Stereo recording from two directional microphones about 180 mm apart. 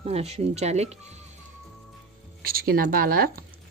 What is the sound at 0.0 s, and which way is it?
Speech, 35° right (ahead or behind).